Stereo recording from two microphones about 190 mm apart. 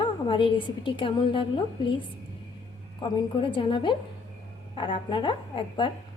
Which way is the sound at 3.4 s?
25° left (ahead or behind).